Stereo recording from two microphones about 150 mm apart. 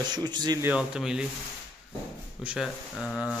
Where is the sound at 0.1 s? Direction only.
30° right (ahead or behind).